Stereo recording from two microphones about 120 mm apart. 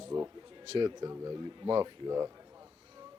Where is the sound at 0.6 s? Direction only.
40° right (ahead or behind).